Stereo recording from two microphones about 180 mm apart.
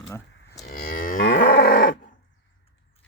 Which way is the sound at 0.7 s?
50° left (ahead or behind).